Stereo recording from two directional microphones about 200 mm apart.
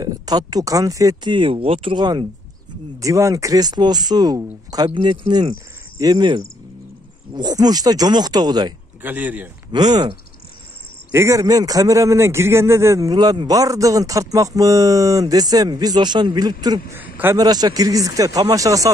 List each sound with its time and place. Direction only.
0.0 s speech: 20° right (ahead or behind)
9.0 s speech: 10° right (ahead or behind)
9.7 s speech: 20° right (ahead or behind)
11.1 s speech: 15° right (ahead or behind)